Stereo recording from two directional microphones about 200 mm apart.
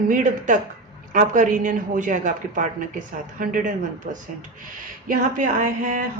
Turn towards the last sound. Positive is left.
turn(degrees=-40)  # may be behind; listen again after turning